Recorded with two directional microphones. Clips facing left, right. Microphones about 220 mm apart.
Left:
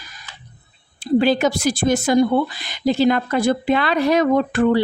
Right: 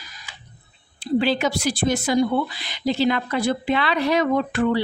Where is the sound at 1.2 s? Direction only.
45° left (ahead or behind).